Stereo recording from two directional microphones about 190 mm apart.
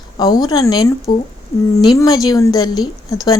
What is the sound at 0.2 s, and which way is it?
Speech, 20° left (ahead or behind).